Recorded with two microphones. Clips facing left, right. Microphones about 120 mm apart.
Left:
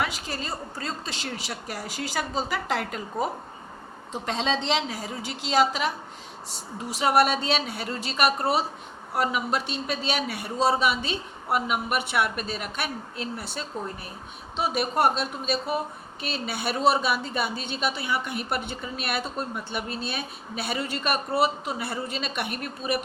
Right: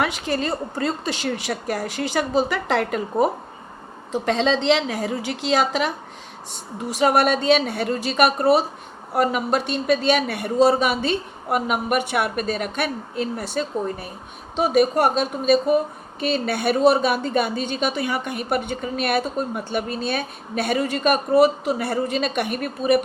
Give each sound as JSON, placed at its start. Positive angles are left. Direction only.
{"t": 0.0, "sound": "a woman's voice", "side_deg": -65}
{"t": 5.1, "sound": "speech", "side_deg": 0}
{"t": 5.5, "sound": "a woman's voice", "side_deg": -60}
{"t": 6.9, "sound": "a woman's voice", "side_deg": -50}